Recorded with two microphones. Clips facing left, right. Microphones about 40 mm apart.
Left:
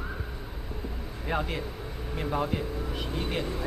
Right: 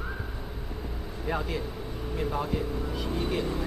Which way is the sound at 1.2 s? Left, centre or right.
Left.